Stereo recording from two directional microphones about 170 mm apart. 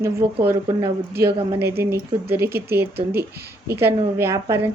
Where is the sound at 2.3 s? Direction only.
70° right (ahead or behind).